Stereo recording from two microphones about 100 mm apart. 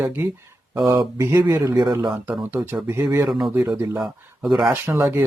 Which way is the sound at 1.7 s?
45° right (ahead or behind).